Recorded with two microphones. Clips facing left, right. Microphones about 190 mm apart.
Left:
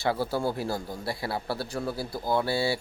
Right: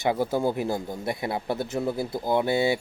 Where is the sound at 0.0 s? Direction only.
20° right (ahead or behind).